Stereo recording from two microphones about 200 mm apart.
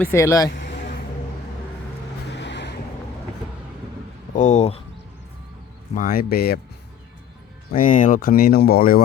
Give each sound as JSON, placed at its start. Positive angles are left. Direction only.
{"t": 0.0, "sound": "speech", "side_deg": 15}
{"t": 0.5, "sound": "vehicle", "side_deg": 60}
{"t": 2.3, "sound": "vehicle", "side_deg": 60}
{"t": 4.4, "sound": "speech", "side_deg": 35}
{"t": 5.9, "sound": "speech", "side_deg": 45}
{"t": 7.8, "sound": "speech", "side_deg": 40}